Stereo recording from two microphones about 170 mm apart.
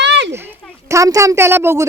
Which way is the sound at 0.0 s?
90° right.